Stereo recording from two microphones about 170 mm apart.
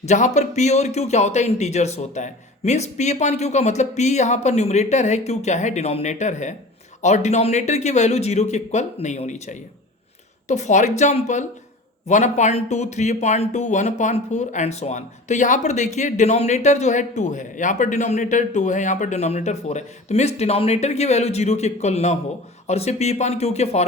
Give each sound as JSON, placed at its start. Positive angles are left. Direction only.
{"t": 0.0, "sound": "a man's voice", "side_deg": 45}